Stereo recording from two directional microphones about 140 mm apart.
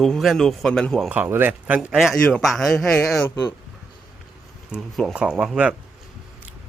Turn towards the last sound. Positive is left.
turn(degrees=-5)  # may be behind; listen again after turning